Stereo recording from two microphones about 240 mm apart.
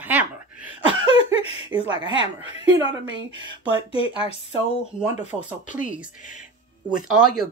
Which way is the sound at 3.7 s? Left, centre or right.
Left.